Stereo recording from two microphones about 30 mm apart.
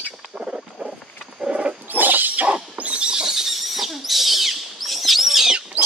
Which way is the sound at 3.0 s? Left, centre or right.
Right.